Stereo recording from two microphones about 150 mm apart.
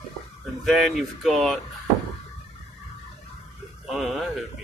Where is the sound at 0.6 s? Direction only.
Centre (ahead or behind).